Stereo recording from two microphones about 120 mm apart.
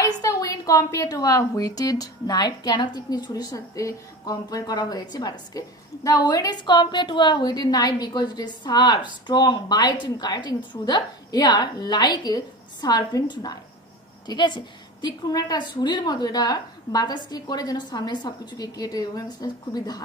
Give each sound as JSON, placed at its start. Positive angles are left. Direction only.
{"t": 0.0, "sound": "a woman's voice", "side_deg": 25}